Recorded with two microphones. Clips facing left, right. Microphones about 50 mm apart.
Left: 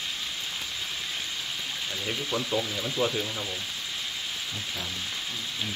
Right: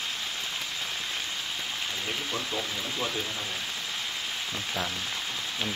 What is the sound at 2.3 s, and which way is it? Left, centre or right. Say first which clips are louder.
Speech: left 3 dB; centre.